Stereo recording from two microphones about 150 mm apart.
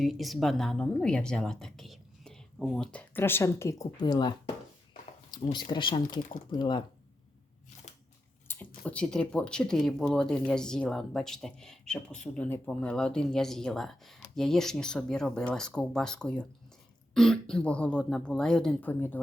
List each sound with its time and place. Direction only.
0.0 s speech: centre (ahead or behind); by 6.8 s 30° left (ahead or behind)
8.4 s speech: 10° left (ahead or behind)